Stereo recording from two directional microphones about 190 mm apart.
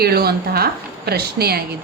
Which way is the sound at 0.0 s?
55° right (ahead or behind).